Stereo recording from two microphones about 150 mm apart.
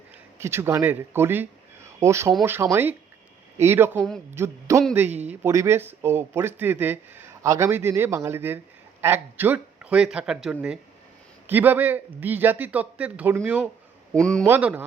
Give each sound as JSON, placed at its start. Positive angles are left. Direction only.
{"t": 0.3, "sound": "a man's voice", "side_deg": -15}
{"t": 5.0, "sound": "a man's voice", "side_deg": -50}
{"t": 5.3, "sound": "a man's voice", "side_deg": -15}